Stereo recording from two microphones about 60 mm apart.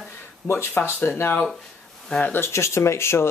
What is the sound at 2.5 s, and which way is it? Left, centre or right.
Speech, left.